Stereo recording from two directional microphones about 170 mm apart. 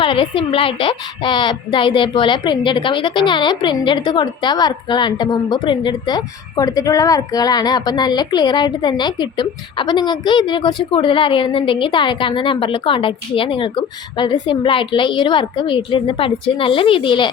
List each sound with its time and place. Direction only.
0.0 s a woman's voice: 30° left (ahead or behind)